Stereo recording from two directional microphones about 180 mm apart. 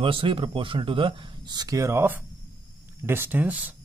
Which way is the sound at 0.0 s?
30° right (ahead or behind).